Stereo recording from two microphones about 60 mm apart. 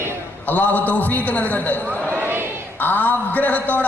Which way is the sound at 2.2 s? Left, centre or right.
Right.